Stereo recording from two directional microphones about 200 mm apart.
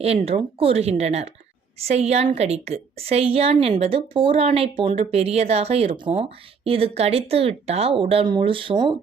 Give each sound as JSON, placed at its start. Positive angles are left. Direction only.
{"t": 0.0, "sound": "a woman's voice", "side_deg": -30}